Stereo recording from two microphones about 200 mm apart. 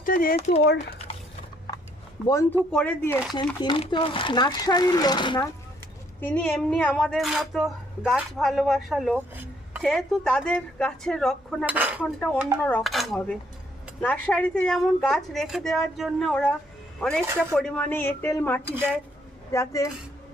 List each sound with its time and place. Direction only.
0.0 s speech: 45° left (ahead or behind)
0.3 s speech: 35° left (ahead or behind)
2.2 s a woman's voice: 15° left (ahead or behind)
3.6 s speech: 25° left (ahead or behind)
6.1 s speech: 10° left (ahead or behind); by 9.8 s 10° right (ahead or behind)
9.8 s speech: centre (ahead or behind)
12.6 s a woman's voice: 5° left (ahead or behind)
18.7 s speech: 10° right (ahead or behind)
19.5 s a woman's voice: 15° left (ahead or behind)